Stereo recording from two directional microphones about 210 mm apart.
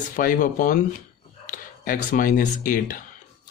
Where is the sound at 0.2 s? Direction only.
40° left (ahead or behind).